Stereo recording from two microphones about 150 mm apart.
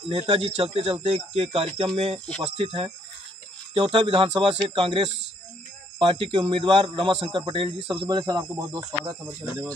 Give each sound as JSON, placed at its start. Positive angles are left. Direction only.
{"t": 0.1, "sound": "speech", "side_deg": -40}